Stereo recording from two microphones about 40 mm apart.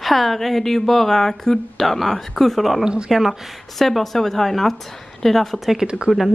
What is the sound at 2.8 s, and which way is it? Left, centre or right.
Speech, right.